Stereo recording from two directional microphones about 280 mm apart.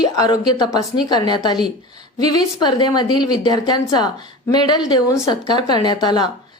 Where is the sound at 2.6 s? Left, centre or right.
Centre.